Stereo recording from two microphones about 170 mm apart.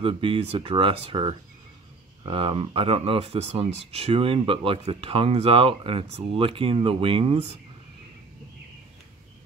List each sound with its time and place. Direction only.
0.0 s speech: 30° right (ahead or behind)